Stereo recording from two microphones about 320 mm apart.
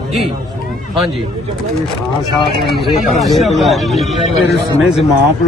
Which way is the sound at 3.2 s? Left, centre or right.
Centre.